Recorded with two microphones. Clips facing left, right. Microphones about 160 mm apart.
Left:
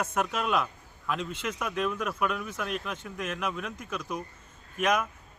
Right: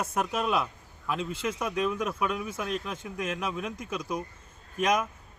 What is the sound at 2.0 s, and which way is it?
Speech, 25° right (ahead or behind).